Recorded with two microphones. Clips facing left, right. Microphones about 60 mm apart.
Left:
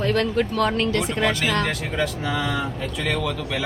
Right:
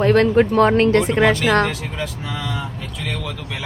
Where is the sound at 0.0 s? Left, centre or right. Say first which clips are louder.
Right 7 dB; right.